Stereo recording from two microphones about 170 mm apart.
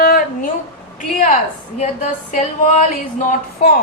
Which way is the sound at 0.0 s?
60° left (ahead or behind).